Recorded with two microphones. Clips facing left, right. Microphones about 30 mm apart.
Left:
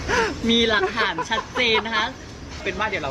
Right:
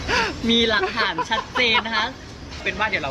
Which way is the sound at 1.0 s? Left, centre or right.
Right.